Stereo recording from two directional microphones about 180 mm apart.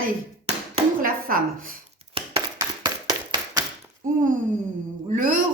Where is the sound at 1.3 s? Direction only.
50° right (ahead or behind).